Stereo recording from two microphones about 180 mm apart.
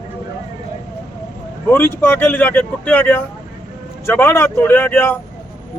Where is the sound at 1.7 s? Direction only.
10° left (ahead or behind).